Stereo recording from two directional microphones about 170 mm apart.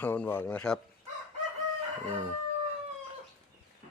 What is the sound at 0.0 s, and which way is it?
Speech, 10° left (ahead or behind).